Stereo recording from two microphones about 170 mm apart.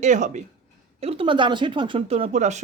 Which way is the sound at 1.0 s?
35° right (ahead or behind).